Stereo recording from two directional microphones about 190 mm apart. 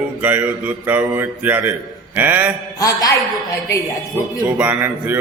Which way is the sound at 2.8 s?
20° left (ahead or behind).